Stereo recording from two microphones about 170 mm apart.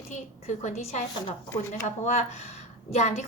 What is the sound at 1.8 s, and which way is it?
A woman's voice, 45° left (ahead or behind).